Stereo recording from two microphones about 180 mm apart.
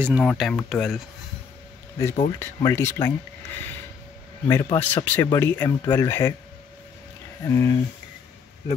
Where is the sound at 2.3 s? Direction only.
15° left (ahead or behind).